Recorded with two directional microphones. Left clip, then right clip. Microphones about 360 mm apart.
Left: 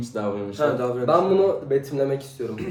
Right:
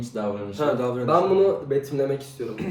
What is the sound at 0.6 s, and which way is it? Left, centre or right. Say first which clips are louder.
Speech: left 1 dB; centre.